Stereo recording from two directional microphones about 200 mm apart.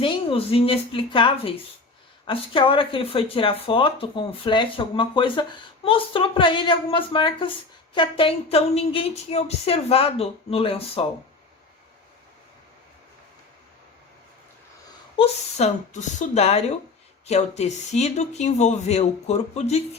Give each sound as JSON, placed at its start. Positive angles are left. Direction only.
{"t": 0.0, "sound": "speech", "side_deg": 25}
{"t": 15.1, "sound": "speech", "side_deg": 30}